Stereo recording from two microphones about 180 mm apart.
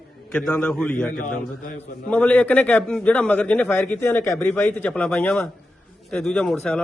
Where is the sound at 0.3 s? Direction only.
5° left (ahead or behind).